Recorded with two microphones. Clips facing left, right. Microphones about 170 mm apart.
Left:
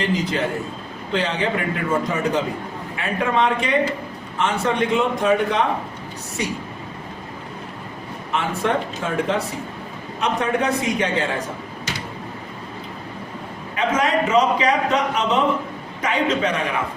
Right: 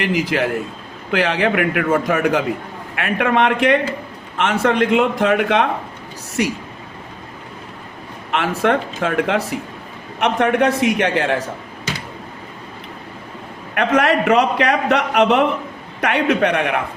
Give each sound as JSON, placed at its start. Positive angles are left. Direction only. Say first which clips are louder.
{"t": 0.0, "sound": "a man's voice", "louder": "right 3 dB", "side_deg": -75}
{"t": 8.3, "sound": "a man's voice", "louder": "right 4 dB", "side_deg": -75}
{"t": 13.7, "sound": "a man's voice", "louder": "right 4 dB", "side_deg": -70}